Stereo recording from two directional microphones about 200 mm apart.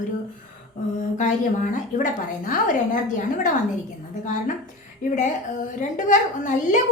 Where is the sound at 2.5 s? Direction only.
40° left (ahead or behind).